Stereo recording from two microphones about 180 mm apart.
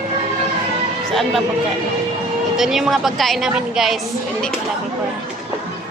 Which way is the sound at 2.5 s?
Centre (ahead or behind).